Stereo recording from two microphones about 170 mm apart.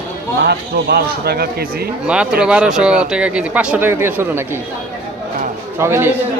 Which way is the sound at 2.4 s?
5° right (ahead or behind).